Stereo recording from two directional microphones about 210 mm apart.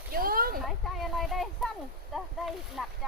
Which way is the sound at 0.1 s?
45° right (ahead or behind).